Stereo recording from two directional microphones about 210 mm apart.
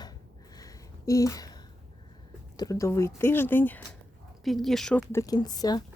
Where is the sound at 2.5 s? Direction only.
15° left (ahead or behind).